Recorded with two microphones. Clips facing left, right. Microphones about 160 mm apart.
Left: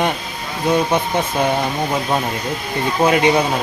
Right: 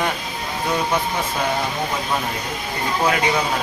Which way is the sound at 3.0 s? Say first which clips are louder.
Left 6 dB; 20° left (ahead or behind).